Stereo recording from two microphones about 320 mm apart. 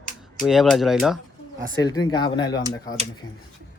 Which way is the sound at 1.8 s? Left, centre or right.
Centre.